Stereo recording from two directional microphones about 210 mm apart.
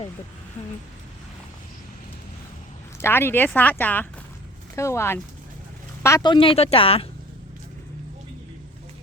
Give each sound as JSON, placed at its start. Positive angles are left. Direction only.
{"t": 3.0, "sound": "speech", "side_deg": 10}